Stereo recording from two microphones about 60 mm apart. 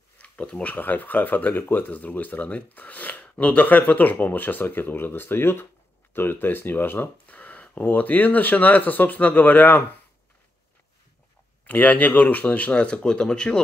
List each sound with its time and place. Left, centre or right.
0.2 s speech: left
11.6 s speech: left